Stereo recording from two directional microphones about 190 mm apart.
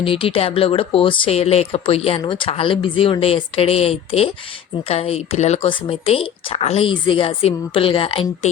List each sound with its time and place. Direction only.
0.0 s speech: 30° left (ahead or behind)